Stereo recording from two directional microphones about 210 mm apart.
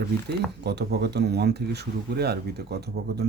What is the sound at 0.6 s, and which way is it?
Speech, 50° right (ahead or behind).